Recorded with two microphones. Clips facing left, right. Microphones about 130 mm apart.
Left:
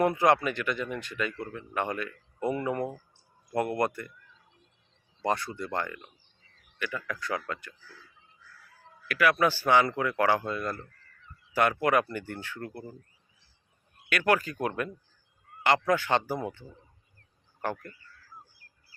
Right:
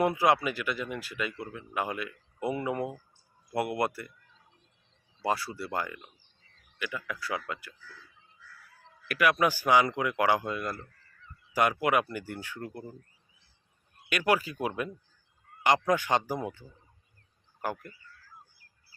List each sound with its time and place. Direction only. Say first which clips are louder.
0.0 s speech: left 1 dB; 10° right (ahead or behind)
5.2 s speech: left 1 dB; 5° right (ahead or behind)
9.0 s speech: left 1 dB; 20° right (ahead or behind)
14.1 s speech: left 1 dB; 15° right (ahead or behind)
17.6 s speech: left 1 dB; 10° right (ahead or behind)